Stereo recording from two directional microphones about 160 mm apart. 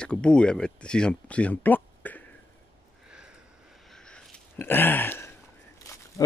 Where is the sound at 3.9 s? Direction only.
5° left (ahead or behind).